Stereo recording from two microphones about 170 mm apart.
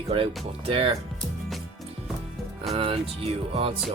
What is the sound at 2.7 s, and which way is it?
Speech, 35° right (ahead or behind).